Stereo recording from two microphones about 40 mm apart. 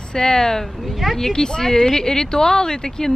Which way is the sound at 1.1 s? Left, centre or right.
Centre.